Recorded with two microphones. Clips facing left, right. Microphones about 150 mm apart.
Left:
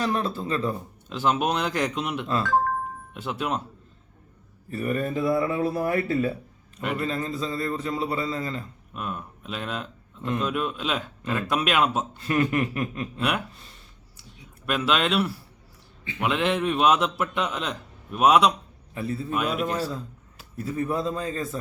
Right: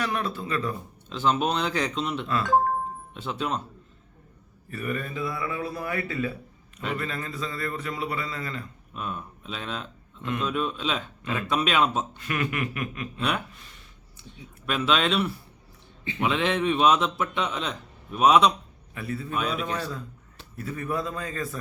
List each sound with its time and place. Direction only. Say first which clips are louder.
0.0 s a man's voice: left 3 dB; 30° left (ahead or behind)
1.1 s speech: left 1 dB; 10° left (ahead or behind)
4.7 s speech: left 5 dB; 35° left (ahead or behind)
7.0 s a man's voice: left 4 dB; 30° left (ahead or behind)
8.9 s speech: left 1 dB; 5° left (ahead or behind)
12.1 s speech: left 6 dB; 35° left (ahead or behind)
13.1 s speech: left 1 dB; 5° left (ahead or behind)
14.8 s speech: even; 5° left (ahead or behind)
18.9 s a man's voice: left 3 dB; 25° left (ahead or behind)
19.3 s speech: left 2 dB; 5° left (ahead or behind)
20.7 s a man's voice: left 4 dB; 30° left (ahead or behind)